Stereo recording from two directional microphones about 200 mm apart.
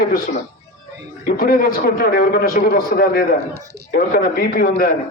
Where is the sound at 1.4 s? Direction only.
45° left (ahead or behind).